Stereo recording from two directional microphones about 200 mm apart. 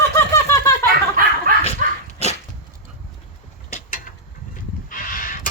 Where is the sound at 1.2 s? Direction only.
45° right (ahead or behind).